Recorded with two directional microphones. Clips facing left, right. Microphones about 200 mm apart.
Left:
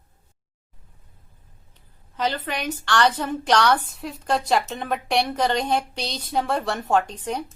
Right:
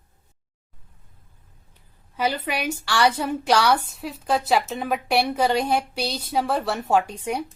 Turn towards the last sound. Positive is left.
turn(degrees=-10)  # may be behind; listen again after turning